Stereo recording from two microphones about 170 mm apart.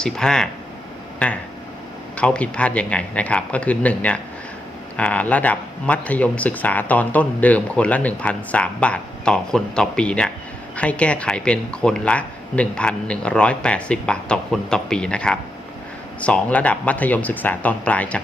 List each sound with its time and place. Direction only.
0.0 s speech: 5° left (ahead or behind)